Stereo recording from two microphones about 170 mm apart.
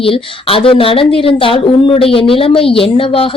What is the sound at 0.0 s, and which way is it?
A woman's voice, 30° left (ahead or behind).